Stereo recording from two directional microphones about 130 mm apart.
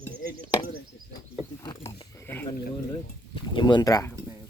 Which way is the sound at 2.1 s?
20° left (ahead or behind).